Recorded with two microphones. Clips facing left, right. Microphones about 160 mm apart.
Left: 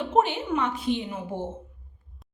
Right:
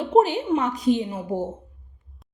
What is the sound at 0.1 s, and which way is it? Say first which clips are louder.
A woman's voice: right 6 dB; 35° right (ahead or behind).